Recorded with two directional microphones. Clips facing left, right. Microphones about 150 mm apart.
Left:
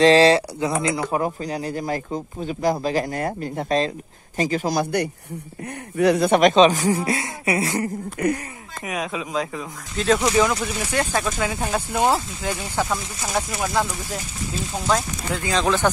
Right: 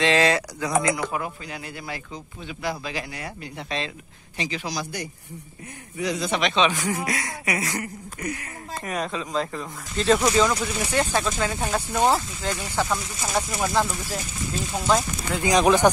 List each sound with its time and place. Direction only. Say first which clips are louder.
0.0 s speech: left 7 dB; 35° left (ahead or behind)
8.2 s speech: left 9 dB; 70° left (ahead or behind)
8.8 s speech: left 2 dB; centre (ahead or behind)
15.4 s speech: right 3 dB; 15° right (ahead or behind)